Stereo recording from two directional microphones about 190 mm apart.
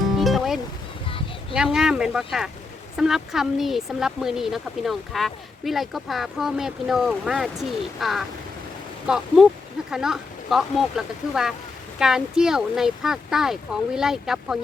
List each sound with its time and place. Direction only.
0.2 s music: centre (ahead or behind)
1.0 s a sound: 30° left (ahead or behind)
1.5 s speech: 5° right (ahead or behind)